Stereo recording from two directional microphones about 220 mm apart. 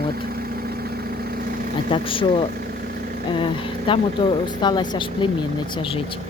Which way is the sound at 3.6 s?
25° left (ahead or behind).